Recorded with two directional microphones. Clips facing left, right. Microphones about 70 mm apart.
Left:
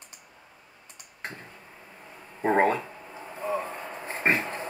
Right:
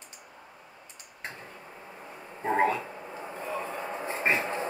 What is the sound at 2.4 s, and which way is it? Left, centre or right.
Speech, left.